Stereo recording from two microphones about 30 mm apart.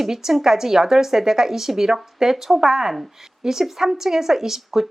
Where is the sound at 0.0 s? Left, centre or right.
Centre.